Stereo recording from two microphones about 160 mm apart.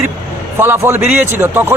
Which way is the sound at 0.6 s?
15° right (ahead or behind).